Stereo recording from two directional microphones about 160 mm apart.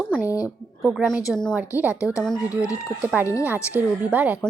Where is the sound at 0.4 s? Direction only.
5° right (ahead or behind).